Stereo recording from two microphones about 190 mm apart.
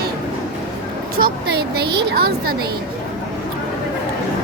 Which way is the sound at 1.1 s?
55° right (ahead or behind).